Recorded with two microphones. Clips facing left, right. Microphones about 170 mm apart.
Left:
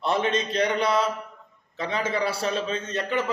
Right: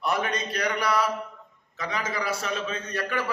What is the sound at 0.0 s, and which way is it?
A man's voice, 25° left (ahead or behind).